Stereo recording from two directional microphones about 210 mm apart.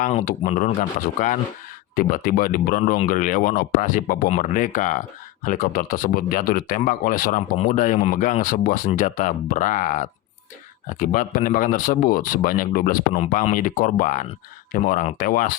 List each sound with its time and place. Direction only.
0.0 s speech: 40° left (ahead or behind)